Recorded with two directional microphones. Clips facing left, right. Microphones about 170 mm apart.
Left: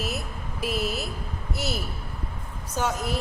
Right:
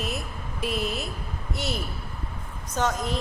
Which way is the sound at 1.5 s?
5° left (ahead or behind).